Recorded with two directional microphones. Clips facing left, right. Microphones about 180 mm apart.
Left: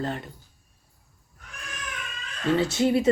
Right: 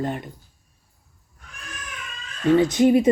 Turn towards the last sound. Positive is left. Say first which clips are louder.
# right 6 dB
turn(degrees=-15)  # may be behind; listen again after turning